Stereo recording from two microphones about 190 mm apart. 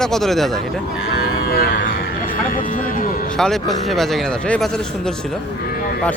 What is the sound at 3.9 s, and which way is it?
Speech, centre (ahead or behind).